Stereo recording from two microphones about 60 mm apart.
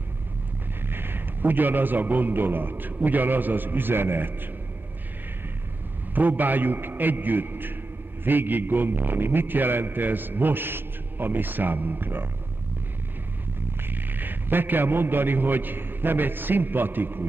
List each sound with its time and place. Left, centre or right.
0.8 s a man's voice: right
6.1 s a man's voice: right
13.8 s a man's voice: right